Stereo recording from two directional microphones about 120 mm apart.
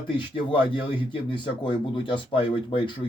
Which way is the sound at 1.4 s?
45° left (ahead or behind).